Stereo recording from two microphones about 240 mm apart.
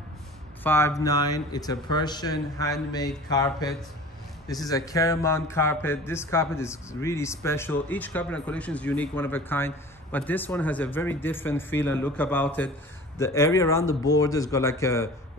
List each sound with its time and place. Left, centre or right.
0.7 s speech: centre